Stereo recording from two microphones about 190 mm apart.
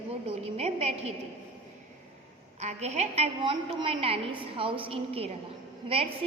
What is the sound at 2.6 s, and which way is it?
A woman's voice, 35° right (ahead or behind).